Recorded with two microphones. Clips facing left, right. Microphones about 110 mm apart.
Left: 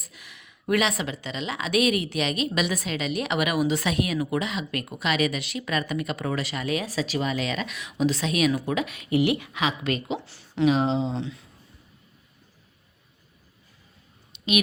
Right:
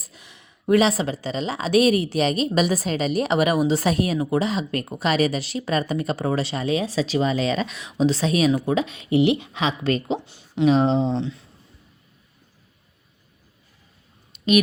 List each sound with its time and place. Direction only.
0.0 s a sound: 30° right (ahead or behind)
0.7 s speech: 30° right (ahead or behind)
10.2 s speech: 20° right (ahead or behind)
10.7 s speech: 40° right (ahead or behind)
14.3 s clicking: 40° right (ahead or behind)